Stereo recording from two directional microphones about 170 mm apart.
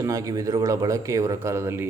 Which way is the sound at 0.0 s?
20° right (ahead or behind).